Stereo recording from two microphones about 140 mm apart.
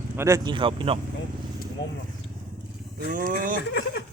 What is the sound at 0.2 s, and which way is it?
Speech, 20° right (ahead or behind).